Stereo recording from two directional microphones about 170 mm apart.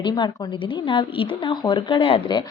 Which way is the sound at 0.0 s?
25° left (ahead or behind).